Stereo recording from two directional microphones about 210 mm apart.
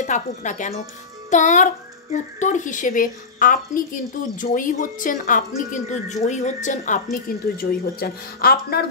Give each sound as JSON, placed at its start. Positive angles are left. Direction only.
{"t": 0.0, "sound": "a woman's voice", "side_deg": 35}